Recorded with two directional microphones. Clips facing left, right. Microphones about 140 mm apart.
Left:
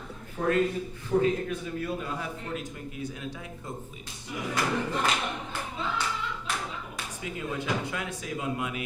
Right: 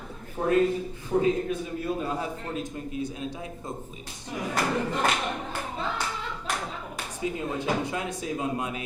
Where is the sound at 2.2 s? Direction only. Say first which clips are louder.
Right 3 dB; 25° right (ahead or behind).